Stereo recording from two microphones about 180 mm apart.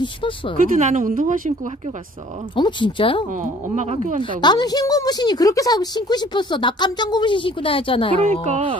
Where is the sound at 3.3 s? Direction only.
45° right (ahead or behind).